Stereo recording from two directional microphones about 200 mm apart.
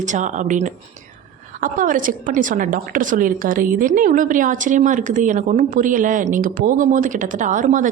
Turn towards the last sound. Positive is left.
turn(degrees=-40)  # may be behind; listen again after turning